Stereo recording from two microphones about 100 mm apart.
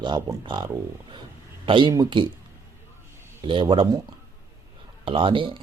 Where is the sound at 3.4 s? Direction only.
60° right (ahead or behind).